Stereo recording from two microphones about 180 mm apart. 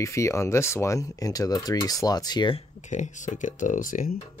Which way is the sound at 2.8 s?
40° left (ahead or behind).